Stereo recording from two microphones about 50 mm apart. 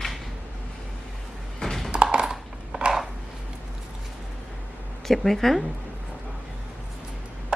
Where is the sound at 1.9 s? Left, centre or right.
Centre.